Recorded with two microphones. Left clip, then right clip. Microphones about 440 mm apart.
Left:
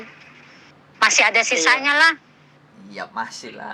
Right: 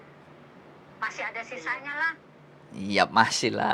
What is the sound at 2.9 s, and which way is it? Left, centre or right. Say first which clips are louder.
Speech: right 8 dB; right.